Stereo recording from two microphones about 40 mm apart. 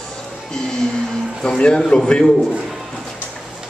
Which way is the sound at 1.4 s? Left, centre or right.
Left.